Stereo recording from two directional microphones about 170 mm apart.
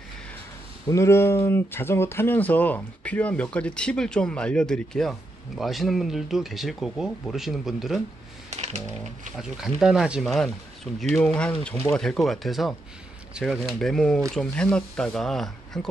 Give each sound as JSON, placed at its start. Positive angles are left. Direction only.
{"t": 0.8, "sound": "speech", "side_deg": 15}
{"t": 8.5, "sound": "typing", "side_deg": -40}
{"t": 9.4, "sound": "speech", "side_deg": -5}